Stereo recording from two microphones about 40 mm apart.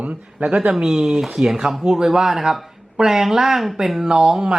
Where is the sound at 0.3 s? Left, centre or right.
Right.